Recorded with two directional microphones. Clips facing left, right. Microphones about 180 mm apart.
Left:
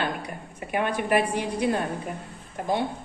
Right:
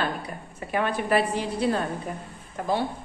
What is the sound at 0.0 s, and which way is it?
A woman's voice, 15° left (ahead or behind).